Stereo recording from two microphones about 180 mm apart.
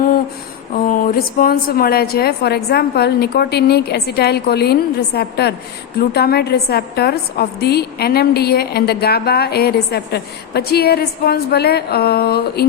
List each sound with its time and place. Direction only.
0.7 s a woman's voice: 50° left (ahead or behind)